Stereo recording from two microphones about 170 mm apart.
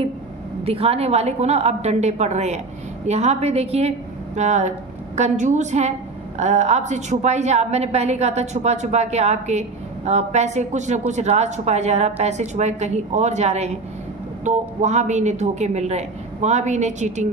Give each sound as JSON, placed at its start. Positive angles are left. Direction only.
{"t": 0.7, "sound": "a woman's voice", "side_deg": -35}